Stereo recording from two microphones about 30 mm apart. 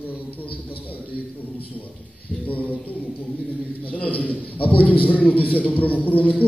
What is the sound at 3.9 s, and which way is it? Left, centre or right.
Speech, left.